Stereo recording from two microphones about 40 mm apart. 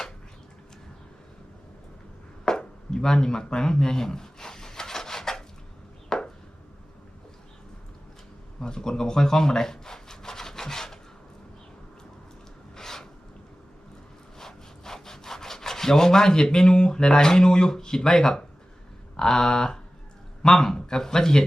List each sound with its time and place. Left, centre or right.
2.4 s a sound: centre
6.1 s chopping: centre
8.6 s rub: centre
12.7 s rub: centre
14.3 s rub: centre
19.1 s a sound: centre
20.4 s speech: centre